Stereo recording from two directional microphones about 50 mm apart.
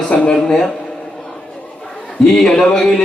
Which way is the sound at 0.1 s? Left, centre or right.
Left.